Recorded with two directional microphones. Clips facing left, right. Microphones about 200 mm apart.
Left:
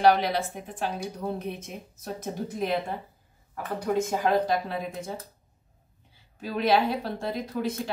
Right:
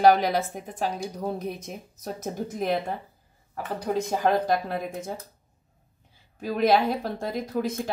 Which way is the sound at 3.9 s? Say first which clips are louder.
Right 1 dB; 45° right (ahead or behind).